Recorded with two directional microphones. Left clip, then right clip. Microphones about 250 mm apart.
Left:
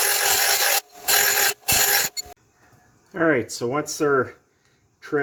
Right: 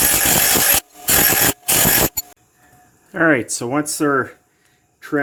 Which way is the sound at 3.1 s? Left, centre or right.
Right.